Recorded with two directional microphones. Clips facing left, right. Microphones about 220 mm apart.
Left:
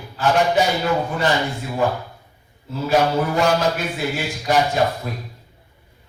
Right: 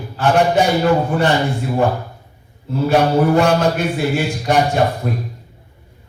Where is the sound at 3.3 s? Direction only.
60° right (ahead or behind).